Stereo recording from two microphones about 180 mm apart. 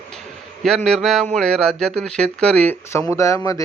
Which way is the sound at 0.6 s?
Centre (ahead or behind).